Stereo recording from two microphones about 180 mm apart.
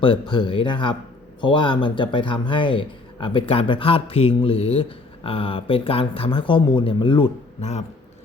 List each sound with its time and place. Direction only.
0.0 s speech: 25° left (ahead or behind)